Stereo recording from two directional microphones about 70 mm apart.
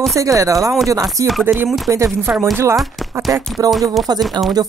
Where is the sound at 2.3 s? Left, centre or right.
Right.